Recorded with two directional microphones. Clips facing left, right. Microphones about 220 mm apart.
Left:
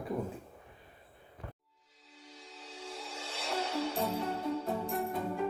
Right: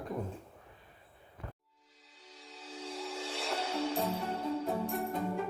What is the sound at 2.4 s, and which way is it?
Music, centre (ahead or behind).